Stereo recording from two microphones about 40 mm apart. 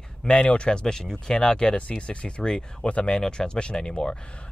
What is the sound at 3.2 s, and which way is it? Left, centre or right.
Speech, centre.